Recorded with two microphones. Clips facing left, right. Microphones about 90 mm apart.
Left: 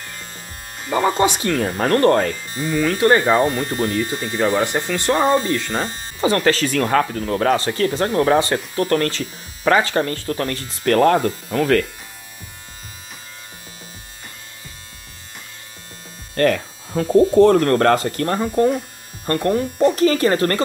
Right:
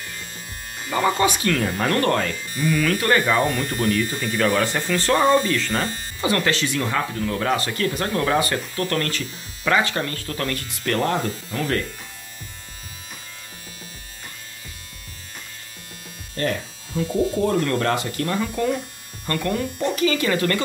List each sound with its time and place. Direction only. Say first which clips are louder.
0.9 s speech: left 3 dB; 25° left (ahead or behind)
5.2 s speech: left 1 dB; 30° left (ahead or behind); by 7.1 s 50° left (ahead or behind)
7.2 s speech: left 4 dB; 35° left (ahead or behind)
16.3 s speech: left 8 dB; 70° left (ahead or behind)
16.9 s speech: left 8 dB; 45° left (ahead or behind)